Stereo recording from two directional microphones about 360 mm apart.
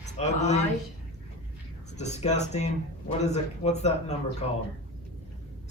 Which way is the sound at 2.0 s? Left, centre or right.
Centre.